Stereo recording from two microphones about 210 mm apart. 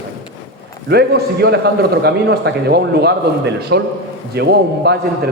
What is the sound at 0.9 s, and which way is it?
A man's voice, 50° right (ahead or behind).